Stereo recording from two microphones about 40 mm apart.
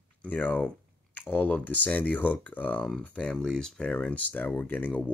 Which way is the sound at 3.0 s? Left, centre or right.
Left.